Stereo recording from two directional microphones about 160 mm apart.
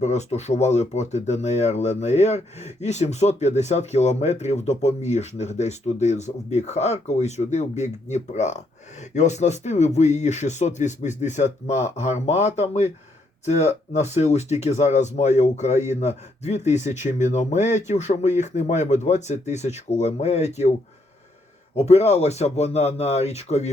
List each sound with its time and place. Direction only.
0.0 s speech: 45° left (ahead or behind)
21.8 s speech: 40° left (ahead or behind)